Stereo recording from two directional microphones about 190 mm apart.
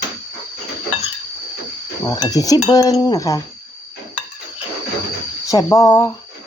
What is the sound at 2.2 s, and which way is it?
Cutlery, 20° left (ahead or behind).